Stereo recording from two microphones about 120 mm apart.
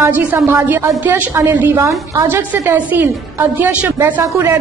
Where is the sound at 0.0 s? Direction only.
15° right (ahead or behind).